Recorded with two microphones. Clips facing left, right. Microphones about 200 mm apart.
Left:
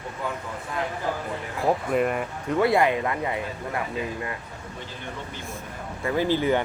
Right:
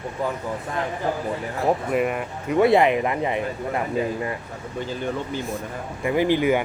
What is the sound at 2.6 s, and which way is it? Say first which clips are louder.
Speech: right 4 dB; 20° right (ahead or behind).